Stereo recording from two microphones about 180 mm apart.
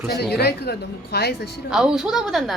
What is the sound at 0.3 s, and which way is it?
Speech, 65° left (ahead or behind).